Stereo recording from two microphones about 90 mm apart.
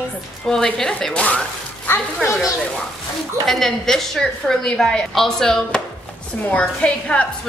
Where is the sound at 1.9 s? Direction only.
25° left (ahead or behind).